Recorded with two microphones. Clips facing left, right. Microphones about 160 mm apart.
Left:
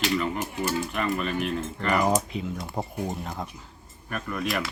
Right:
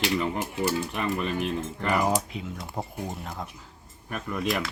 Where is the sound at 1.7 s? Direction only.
10° right (ahead or behind).